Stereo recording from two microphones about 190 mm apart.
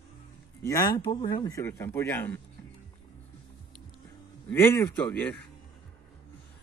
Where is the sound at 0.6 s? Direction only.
15° left (ahead or behind).